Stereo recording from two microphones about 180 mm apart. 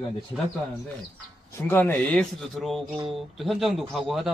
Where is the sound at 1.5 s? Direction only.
10° left (ahead or behind).